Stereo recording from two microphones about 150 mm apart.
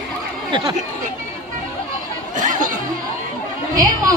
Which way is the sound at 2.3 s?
60° right (ahead or behind).